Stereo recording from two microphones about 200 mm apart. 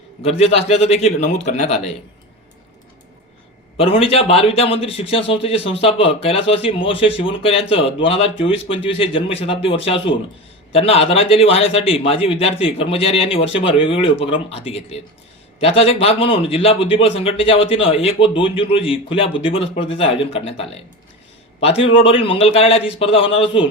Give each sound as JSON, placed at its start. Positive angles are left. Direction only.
{"t": 0.2, "sound": "a man's voice", "side_deg": 30}
{"t": 3.8, "sound": "a man's voice", "side_deg": 30}
{"t": 21.9, "sound": "a man's voice", "side_deg": 25}